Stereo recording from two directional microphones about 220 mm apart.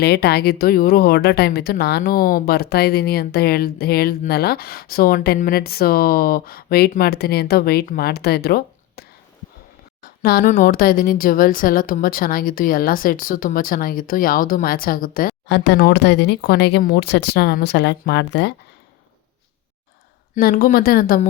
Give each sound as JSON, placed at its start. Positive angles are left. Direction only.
{"t": 0.0, "sound": "speech", "side_deg": 45}
{"t": 10.0, "sound": "a sound", "side_deg": 40}
{"t": 10.5, "sound": "speech", "side_deg": 40}
{"t": 20.3, "sound": "speech", "side_deg": 40}